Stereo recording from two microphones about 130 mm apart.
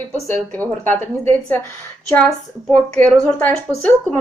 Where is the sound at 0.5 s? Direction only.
15° left (ahead or behind).